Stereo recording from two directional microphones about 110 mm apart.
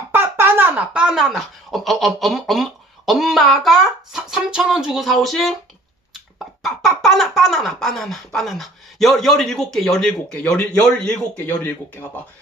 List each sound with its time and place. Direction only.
0.1 s speech: 20° right (ahead or behind); by 12.0 s 15° left (ahead or behind)